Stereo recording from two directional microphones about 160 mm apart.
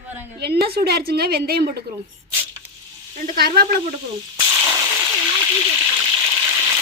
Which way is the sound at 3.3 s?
70° right (ahead or behind).